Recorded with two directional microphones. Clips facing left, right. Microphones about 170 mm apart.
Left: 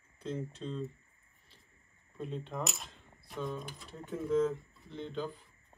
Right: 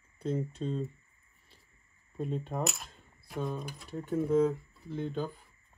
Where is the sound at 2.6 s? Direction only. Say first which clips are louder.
Right 4 dB; centre (ahead or behind).